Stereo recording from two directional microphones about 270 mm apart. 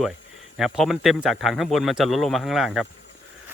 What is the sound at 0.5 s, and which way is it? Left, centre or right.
Speech, centre.